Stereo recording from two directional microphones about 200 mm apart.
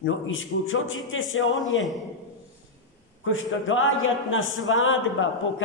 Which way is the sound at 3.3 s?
80° left.